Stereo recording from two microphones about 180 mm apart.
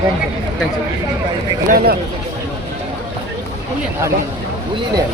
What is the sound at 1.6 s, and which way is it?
Speech, 60° right (ahead or behind).